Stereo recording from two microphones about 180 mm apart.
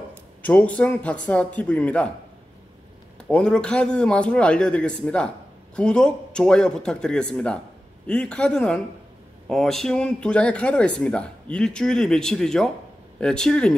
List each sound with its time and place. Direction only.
0.1 s a man's voice: 10° left (ahead or behind)
3.2 s speech: 5° left (ahead or behind)